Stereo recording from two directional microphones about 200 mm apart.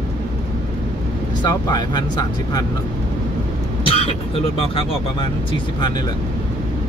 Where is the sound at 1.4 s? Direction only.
20° left (ahead or behind).